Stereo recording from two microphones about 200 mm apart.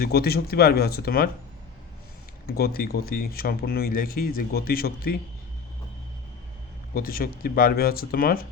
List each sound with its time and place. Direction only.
0.0 s speech: 50° left (ahead or behind)
2.5 s speech: 50° left (ahead or behind)
6.9 s speech: 45° left (ahead or behind)